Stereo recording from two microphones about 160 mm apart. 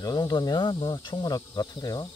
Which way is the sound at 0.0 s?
25° left (ahead or behind).